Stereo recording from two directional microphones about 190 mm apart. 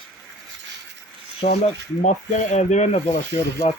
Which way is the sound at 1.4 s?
35° left (ahead or behind).